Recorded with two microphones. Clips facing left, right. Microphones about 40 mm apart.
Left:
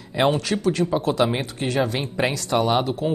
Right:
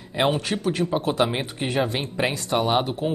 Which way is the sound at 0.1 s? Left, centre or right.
Centre.